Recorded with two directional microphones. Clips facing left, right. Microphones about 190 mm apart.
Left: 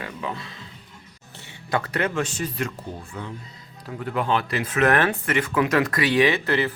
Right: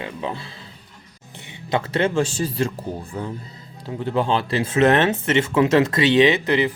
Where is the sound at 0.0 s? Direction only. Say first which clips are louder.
Right 3 dB; 30° right (ahead or behind).